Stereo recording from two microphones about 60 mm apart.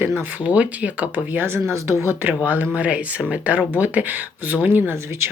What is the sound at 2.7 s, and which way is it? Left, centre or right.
Speech, right.